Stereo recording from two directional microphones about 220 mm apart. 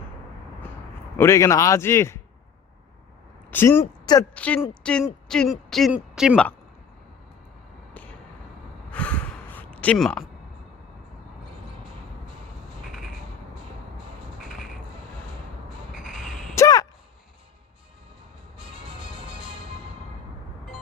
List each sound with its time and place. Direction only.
1.2 s speech: 15° left (ahead or behind)
3.5 s speech: 10° left (ahead or behind)
4.4 s speech: 5° left (ahead or behind)
8.9 s gasp: 5° left (ahead or behind)
12.8 s creak: centre (ahead or behind)
14.3 s music: centre (ahead or behind)
15.9 s crow: centre (ahead or behind)
16.6 s a sound: 15° left (ahead or behind)